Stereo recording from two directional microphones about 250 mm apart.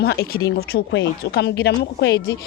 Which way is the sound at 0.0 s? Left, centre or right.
Left.